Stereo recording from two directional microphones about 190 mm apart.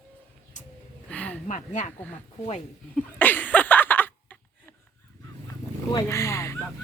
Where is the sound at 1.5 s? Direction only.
40° left (ahead or behind).